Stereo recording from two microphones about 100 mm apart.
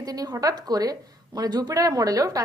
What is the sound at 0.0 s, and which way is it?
A woman's voice, 40° right (ahead or behind).